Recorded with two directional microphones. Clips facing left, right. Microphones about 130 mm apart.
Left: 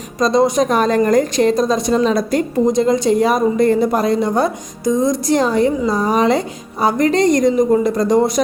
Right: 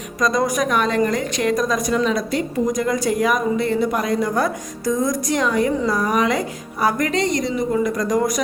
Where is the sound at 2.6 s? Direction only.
25° left (ahead or behind).